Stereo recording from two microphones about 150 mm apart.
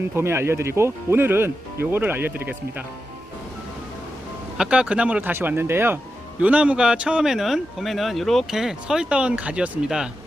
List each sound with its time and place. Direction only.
0.2 s speech: 15° right (ahead or behind)
4.5 s speech: 5° right (ahead or behind)